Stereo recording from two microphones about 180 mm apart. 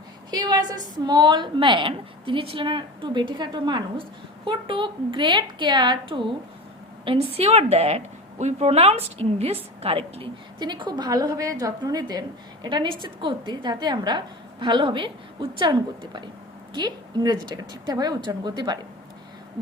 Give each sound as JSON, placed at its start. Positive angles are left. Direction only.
{"t": 0.3, "sound": "a woman's voice", "side_deg": -25}